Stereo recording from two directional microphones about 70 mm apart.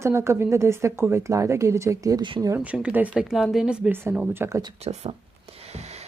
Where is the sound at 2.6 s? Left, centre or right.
Centre.